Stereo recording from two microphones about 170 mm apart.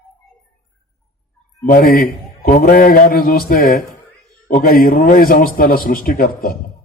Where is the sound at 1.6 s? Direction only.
55° left (ahead or behind).